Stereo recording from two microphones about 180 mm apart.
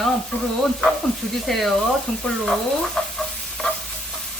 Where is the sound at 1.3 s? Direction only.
Centre (ahead or behind).